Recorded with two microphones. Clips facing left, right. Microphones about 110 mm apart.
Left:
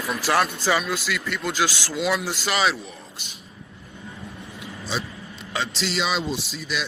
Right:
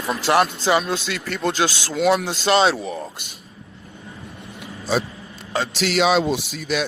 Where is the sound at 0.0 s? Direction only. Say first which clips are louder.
Right 4 dB; 25° right (ahead or behind).